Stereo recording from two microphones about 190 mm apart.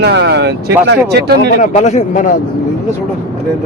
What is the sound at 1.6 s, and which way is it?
Speech, 40° left (ahead or behind).